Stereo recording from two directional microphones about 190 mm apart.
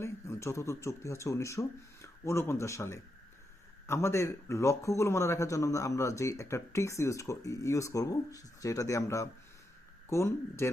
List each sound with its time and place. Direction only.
0.0 s speech: 15° left (ahead or behind)